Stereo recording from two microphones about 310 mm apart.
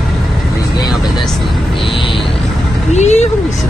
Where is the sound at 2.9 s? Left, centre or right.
Left.